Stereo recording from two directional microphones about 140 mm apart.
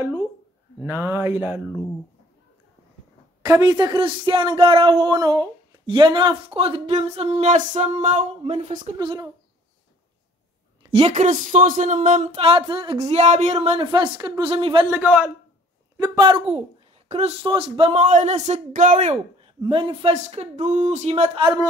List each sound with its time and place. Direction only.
0.8 s speech: 15° right (ahead or behind)
1.7 s speech: 20° left (ahead or behind)
3.4 s speech: 25° right (ahead or behind); by 8.3 s 60° right (ahead or behind)
8.9 s speech: 30° right (ahead or behind)
10.9 s a woman's voice: 45° right (ahead or behind)
11.1 s speech: 65° right (ahead or behind); by 12.9 s 40° right (ahead or behind)
13.0 s speech: 50° right (ahead or behind)
13.7 s speech: 35° right (ahead or behind)
14.9 s speech: 10° right (ahead or behind)
16.2 s speech: 40° right (ahead or behind); by 19.5 s 55° right (ahead or behind)
19.6 s speech: 35° right (ahead or behind)
21.4 s speech: 30° right (ahead or behind)